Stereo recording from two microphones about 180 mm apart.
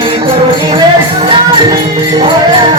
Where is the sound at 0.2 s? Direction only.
30° right (ahead or behind).